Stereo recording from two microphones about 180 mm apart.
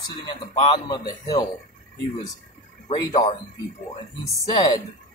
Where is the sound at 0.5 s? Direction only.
25° left (ahead or behind).